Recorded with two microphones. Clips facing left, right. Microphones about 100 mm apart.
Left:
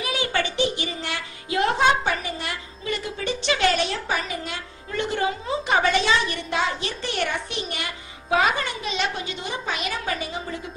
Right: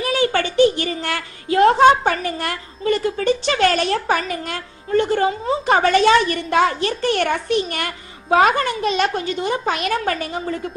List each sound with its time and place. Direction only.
0.0 s a woman's voice: 40° right (ahead or behind)